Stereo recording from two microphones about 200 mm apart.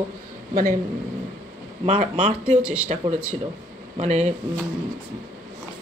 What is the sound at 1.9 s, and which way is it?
Speech, 35° right (ahead or behind).